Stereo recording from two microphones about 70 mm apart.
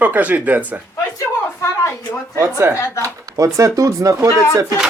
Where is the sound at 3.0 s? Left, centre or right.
Right.